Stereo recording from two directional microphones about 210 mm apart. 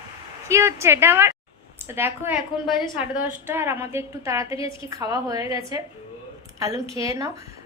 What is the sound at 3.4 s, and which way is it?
Speech, 10° right (ahead or behind).